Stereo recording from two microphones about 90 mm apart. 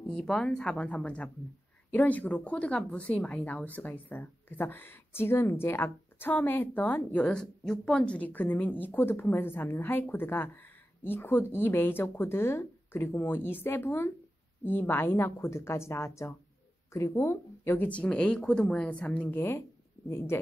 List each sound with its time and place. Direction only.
0.1 s a woman's voice: 5° left (ahead or behind); by 17.8 s 30° left (ahead or behind)
17.8 s a woman's voice: 15° left (ahead or behind)